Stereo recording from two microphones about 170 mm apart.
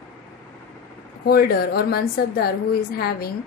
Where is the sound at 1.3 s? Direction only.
65° left (ahead or behind).